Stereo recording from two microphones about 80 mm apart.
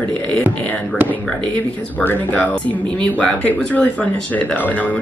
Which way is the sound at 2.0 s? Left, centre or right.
Left.